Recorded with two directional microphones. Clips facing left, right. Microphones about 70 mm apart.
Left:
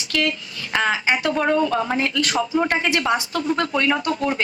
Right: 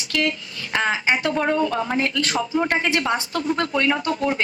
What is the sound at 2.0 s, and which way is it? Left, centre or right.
A woman's voice, right.